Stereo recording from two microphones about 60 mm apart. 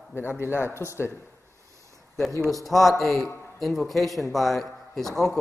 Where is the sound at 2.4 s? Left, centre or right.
Centre.